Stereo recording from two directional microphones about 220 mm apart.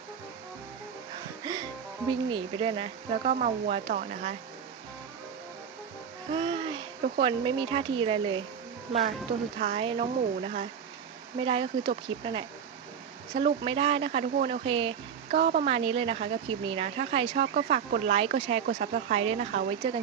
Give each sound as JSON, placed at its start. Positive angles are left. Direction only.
{"t": 1.5, "sound": "music", "side_deg": -20}
{"t": 2.0, "sound": "speech", "side_deg": -20}
{"t": 6.3, "sound": "speech", "side_deg": -20}
{"t": 9.6, "sound": "speech", "side_deg": -30}
{"t": 15.3, "sound": "a woman's voice", "side_deg": -40}
{"t": 15.6, "sound": "speech", "side_deg": -25}
{"t": 17.3, "sound": "speech", "side_deg": -45}
{"t": 17.7, "sound": "speech", "side_deg": -30}